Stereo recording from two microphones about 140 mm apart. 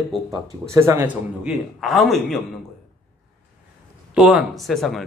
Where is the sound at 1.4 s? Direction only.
Centre (ahead or behind).